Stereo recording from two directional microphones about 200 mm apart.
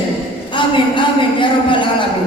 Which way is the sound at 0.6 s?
25° left (ahead or behind).